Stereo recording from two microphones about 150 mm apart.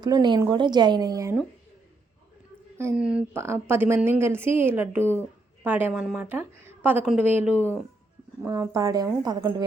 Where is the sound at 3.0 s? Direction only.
10° right (ahead or behind).